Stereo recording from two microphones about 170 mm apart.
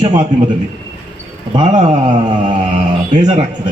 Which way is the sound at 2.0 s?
30° right (ahead or behind).